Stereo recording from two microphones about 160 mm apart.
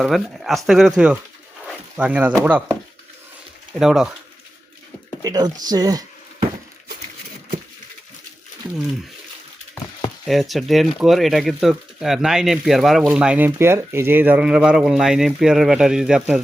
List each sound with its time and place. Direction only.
0.0 s speech: centre (ahead or behind)
3.8 s speech: 5° right (ahead or behind)
5.2 s speech: 25° right (ahead or behind)
10.2 s speech: centre (ahead or behind)